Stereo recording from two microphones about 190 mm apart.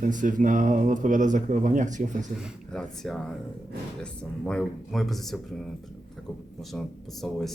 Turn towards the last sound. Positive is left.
turn(degrees=0)  # may be behind; listen again after turning